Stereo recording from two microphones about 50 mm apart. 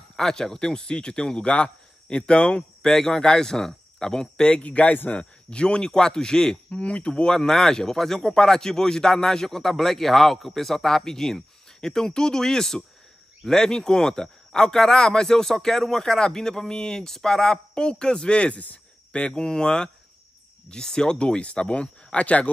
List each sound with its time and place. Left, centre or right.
0.1 s speech: centre
4.6 s speech: left
19.2 s speech: centre